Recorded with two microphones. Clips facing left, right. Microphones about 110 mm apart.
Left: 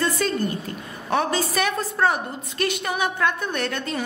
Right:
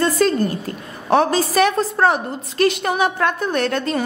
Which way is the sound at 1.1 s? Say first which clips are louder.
Right 6 dB; 30° right (ahead or behind).